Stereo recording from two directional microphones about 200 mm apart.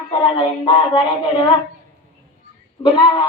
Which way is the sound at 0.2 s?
25° left (ahead or behind).